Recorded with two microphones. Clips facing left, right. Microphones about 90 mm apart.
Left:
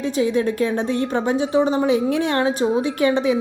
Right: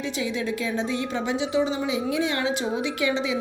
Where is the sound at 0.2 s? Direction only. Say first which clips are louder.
Left 10 dB; 45° left (ahead or behind).